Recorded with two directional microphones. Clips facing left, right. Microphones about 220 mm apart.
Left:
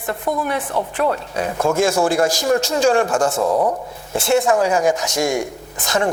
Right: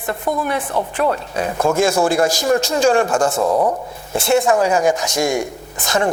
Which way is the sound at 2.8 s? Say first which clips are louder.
Right 1 dB; 25° right (ahead or behind).